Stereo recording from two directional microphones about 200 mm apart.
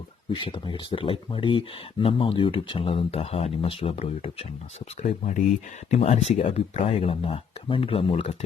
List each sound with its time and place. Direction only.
0.3 s speech: 25° left (ahead or behind)
5.9 s speech: 30° left (ahead or behind)